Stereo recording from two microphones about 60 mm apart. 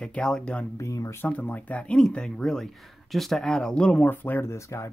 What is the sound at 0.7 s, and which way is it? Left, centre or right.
Speech, left.